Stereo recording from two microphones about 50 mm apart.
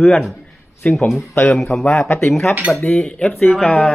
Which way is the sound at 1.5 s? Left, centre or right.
Centre.